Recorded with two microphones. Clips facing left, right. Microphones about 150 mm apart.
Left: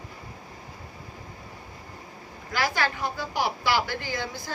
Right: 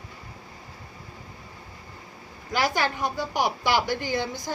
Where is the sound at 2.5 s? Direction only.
20° right (ahead or behind).